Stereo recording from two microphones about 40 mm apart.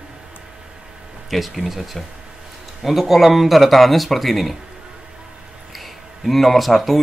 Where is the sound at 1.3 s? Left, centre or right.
Centre.